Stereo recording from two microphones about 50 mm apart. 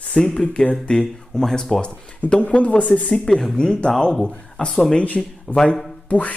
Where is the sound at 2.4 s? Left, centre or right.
Left.